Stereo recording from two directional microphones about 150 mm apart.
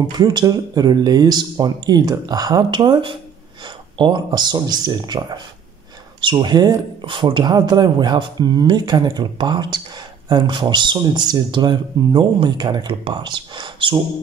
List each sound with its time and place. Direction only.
0.2 s speech: 30° right (ahead or behind)